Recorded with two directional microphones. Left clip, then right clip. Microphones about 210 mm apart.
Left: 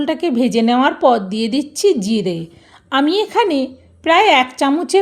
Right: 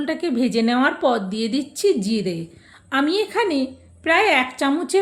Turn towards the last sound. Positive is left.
turn(degrees=35)  # may be behind; listen again after turning